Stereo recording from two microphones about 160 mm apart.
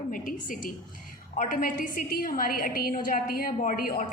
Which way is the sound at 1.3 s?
55° left (ahead or behind).